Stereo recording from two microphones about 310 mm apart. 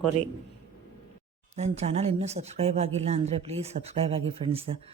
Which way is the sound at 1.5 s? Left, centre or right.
Right.